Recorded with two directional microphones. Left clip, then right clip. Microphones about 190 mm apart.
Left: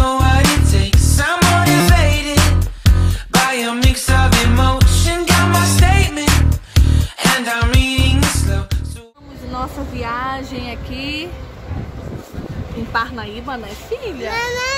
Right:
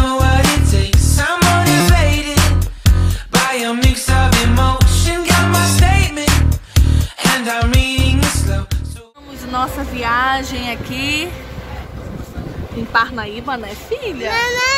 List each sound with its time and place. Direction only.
0.0 s music: centre (ahead or behind)
9.5 s a sound: centre (ahead or behind)
12.9 s a woman's voice: centre (ahead or behind)
14.3 s a child's voice: 20° left (ahead or behind)